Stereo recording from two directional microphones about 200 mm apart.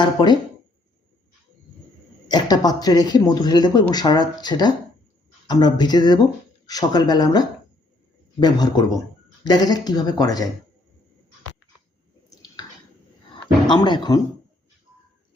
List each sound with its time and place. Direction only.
0.0 s speech: 20° left (ahead or behind)
2.2 s speech: 20° left (ahead or behind)
12.3 s drip: 20° left (ahead or behind)
13.7 s speech: 20° left (ahead or behind)